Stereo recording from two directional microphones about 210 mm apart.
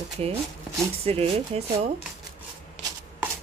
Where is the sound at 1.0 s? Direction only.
25° right (ahead or behind).